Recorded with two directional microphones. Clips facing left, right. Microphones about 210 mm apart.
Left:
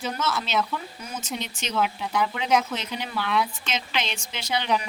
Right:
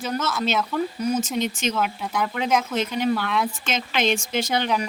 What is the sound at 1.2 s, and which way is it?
Speech, 45° right (ahead or behind).